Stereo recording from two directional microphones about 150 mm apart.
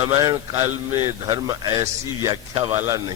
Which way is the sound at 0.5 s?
15° right (ahead or behind).